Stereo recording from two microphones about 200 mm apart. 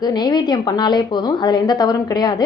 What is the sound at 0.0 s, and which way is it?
A woman's voice, 20° left (ahead or behind).